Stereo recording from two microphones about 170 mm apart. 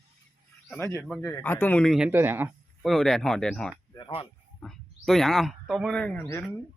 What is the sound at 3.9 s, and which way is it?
Speech, 25° left (ahead or behind).